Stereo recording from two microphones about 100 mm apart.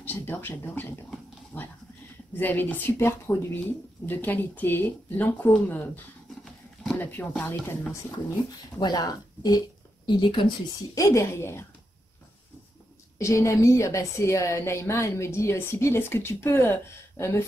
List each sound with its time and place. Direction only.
0.0 s a woman's voice: 20° left (ahead or behind)
6.4 s a sound: 5° left (ahead or behind)
7.0 s a woman's voice: 20° left (ahead or behind)
8.7 s speech: 45° left (ahead or behind)
10.0 s speech: 50° left (ahead or behind)
11.0 s a woman's voice: 30° left (ahead or behind)
13.2 s a woman's voice: 30° left (ahead or behind)